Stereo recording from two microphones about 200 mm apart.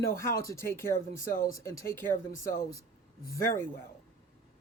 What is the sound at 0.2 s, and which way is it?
Speech, 15° left (ahead or behind).